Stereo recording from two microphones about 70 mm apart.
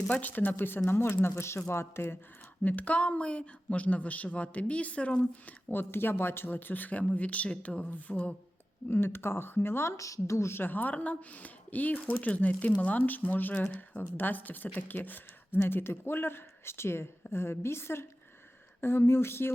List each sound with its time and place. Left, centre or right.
0.1 s speech: left
2.6 s speech: left
5.7 s speech: left
8.9 s speech: left
10.0 s speech: left